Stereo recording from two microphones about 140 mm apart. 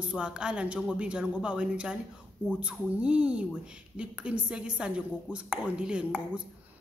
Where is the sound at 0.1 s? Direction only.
5° right (ahead or behind).